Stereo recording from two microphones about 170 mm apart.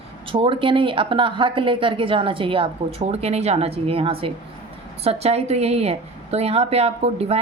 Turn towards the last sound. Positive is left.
turn(degrees=-35)  # may be behind; listen again after turning